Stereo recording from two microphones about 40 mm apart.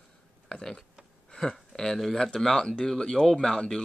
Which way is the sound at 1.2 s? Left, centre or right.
Centre.